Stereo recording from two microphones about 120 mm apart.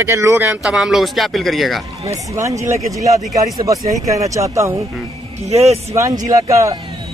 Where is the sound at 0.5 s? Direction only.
5° right (ahead or behind).